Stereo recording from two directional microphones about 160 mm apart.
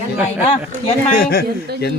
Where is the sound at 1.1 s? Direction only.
70° left (ahead or behind).